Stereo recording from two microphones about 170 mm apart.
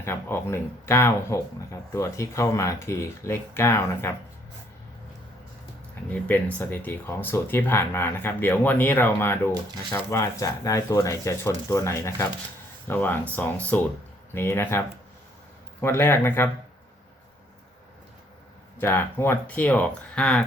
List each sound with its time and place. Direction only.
0.0 s speech: 15° left (ahead or behind)
6.1 s speech: 10° left (ahead or behind)
18.8 s speech: 10° left (ahead or behind)